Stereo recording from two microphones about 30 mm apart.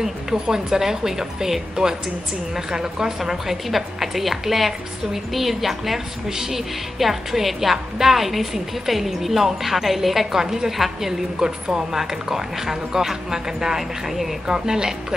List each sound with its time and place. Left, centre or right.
0.0 s a woman's voice: centre
3.6 s a woman's voice: centre
10.3 s speech: centre
11.3 s a woman's voice: right
11.9 s speech: centre
14.0 s a woman's voice: centre
14.5 s a woman's voice: centre